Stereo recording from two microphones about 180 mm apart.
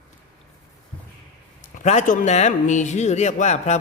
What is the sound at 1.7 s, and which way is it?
A man's voice, 40° left (ahead or behind).